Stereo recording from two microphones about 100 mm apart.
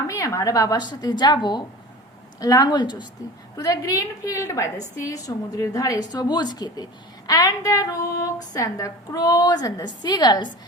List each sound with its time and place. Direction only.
0.1 s speech: 35° left (ahead or behind)